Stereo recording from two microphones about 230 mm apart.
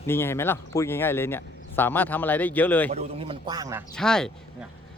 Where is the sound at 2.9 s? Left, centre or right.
Right.